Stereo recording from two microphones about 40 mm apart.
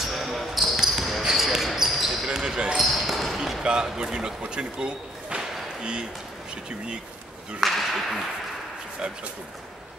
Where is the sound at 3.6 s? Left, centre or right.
Right.